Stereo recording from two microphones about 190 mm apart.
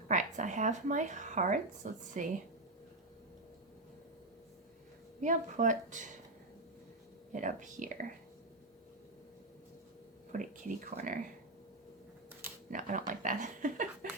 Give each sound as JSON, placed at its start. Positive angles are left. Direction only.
{"t": 0.1, "sound": "speech", "side_deg": -40}
{"t": 5.2, "sound": "speech", "side_deg": -40}
{"t": 7.3, "sound": "speech", "side_deg": -40}
{"t": 10.3, "sound": "speech", "side_deg": -40}
{"t": 12.7, "sound": "speech", "side_deg": -45}